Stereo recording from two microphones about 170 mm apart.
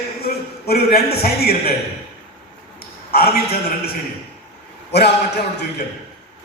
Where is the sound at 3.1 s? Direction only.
65° left (ahead or behind).